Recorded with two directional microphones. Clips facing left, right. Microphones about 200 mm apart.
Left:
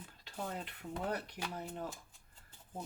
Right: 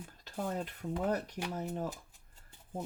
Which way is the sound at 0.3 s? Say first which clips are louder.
Right 6 dB; 45° right (ahead or behind).